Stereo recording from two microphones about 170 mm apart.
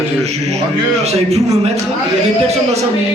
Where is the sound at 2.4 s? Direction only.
40° right (ahead or behind).